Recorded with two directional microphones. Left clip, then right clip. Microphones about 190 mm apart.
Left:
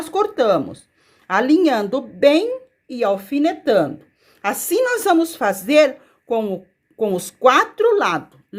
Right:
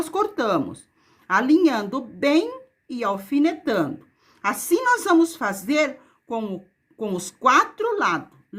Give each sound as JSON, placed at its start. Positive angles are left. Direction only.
{"t": 0.0, "sound": "a woman's voice", "side_deg": 5}